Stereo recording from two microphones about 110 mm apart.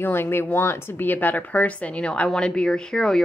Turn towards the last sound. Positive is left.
turn(degrees=5)  # may be behind; listen again after turning